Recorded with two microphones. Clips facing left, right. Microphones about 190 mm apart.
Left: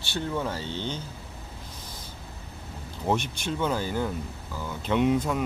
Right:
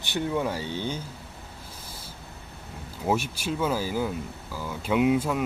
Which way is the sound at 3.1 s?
5° right (ahead or behind).